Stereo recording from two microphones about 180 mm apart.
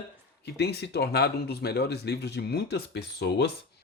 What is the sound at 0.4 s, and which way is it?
Speech, 65° left (ahead or behind).